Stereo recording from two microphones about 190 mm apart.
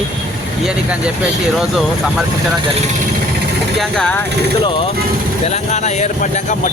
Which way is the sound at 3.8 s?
5° left (ahead or behind).